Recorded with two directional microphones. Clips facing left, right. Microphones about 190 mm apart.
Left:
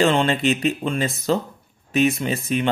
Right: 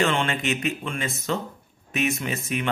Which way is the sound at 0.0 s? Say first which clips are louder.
Left 6 dB; 35° left (ahead or behind).